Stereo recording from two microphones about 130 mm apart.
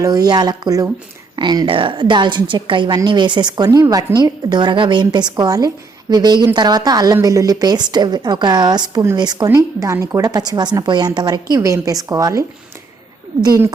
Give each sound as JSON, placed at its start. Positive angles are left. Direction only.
{"t": 0.0, "sound": "a woman's voice", "side_deg": -30}